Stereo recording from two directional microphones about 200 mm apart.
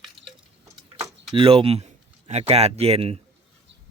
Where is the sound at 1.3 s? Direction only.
30° right (ahead or behind).